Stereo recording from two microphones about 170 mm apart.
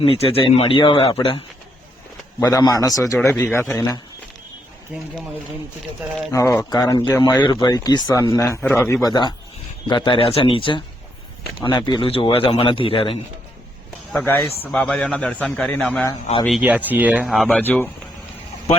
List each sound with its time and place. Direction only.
0.0 s speech: 35° left (ahead or behind)
2.4 s a man's voice: 20° left (ahead or behind)
6.3 s speech: 15° left (ahead or behind)
9.0 s speech: 25° left (ahead or behind)
14.1 s a man's voice: 10° left (ahead or behind)
16.5 s speech: 5° right (ahead or behind)
17.6 s a man's voice: 10° left (ahead or behind)